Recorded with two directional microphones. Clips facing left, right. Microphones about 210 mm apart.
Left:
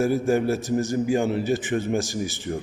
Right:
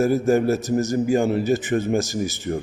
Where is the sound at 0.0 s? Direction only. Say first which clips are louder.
Right 3 dB; 40° right (ahead or behind).